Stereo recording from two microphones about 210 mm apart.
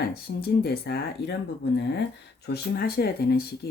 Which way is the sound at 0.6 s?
50° left (ahead or behind).